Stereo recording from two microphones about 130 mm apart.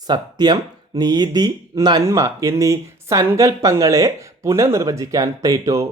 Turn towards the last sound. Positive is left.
turn(degrees=-25)  # may be behind; listen again after turning